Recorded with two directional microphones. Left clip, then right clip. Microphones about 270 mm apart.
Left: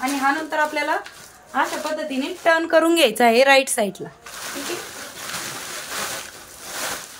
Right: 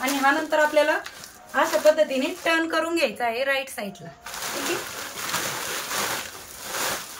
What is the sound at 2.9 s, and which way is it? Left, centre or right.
Speech, left.